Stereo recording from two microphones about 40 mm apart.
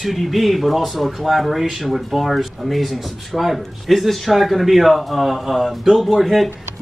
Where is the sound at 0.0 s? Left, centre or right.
Centre.